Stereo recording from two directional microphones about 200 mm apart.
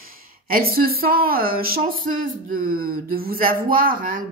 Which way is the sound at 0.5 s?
45° right (ahead or behind).